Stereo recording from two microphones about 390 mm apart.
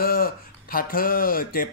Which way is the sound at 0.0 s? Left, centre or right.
Left.